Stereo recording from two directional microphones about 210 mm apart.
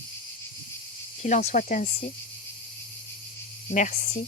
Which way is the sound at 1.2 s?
35° left (ahead or behind).